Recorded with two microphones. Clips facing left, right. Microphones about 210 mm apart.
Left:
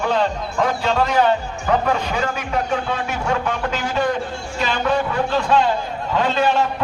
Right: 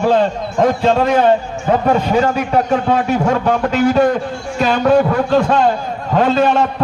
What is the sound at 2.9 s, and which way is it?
A man's voice, 35° right (ahead or behind).